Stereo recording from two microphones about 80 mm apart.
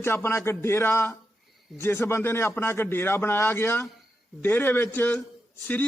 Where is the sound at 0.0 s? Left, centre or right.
Left.